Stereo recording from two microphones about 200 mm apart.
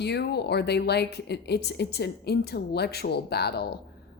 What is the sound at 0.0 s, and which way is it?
A woman's voice, 55° left (ahead or behind).